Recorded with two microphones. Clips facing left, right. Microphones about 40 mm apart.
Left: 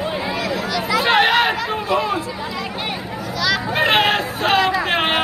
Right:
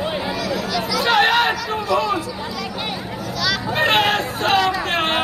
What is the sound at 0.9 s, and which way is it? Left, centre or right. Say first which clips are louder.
Chatter: left 3 dB; left.